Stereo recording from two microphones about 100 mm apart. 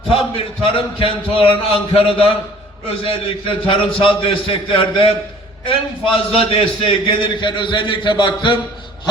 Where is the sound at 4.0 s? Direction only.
65° left (ahead or behind).